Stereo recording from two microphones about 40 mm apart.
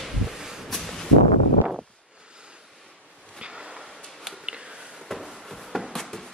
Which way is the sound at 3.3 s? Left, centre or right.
Right.